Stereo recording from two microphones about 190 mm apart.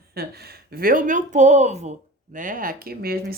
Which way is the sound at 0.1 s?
55° right (ahead or behind).